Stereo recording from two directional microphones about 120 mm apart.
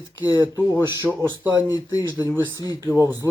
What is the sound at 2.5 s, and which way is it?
Speech, 30° left (ahead or behind).